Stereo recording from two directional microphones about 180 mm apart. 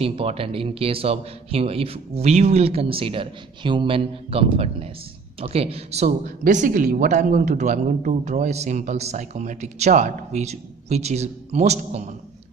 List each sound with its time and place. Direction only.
0.0 s speech: 30° right (ahead or behind)